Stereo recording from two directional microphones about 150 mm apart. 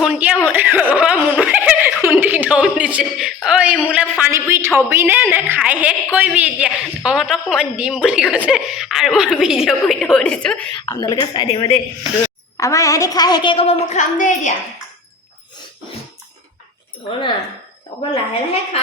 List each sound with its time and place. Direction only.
0.0 s a woman's voice: 5° right (ahead or behind)
10.8 s a woman's voice: 30° left (ahead or behind)
12.5 s a woman's voice: 20° left (ahead or behind)
13.9 s a woman's voice: 55° left (ahead or behind)
17.1 s speech: 35° left (ahead or behind)